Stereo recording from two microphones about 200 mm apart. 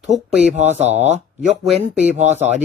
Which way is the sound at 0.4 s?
35° right (ahead or behind).